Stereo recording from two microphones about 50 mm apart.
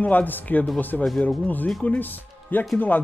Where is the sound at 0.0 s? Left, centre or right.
Left.